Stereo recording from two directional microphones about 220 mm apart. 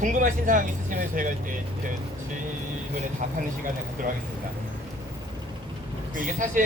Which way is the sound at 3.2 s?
35° right (ahead or behind).